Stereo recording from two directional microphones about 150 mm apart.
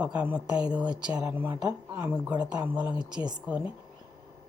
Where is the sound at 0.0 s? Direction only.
10° right (ahead or behind).